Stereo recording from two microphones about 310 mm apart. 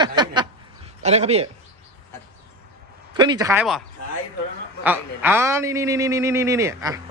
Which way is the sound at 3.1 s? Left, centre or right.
Centre.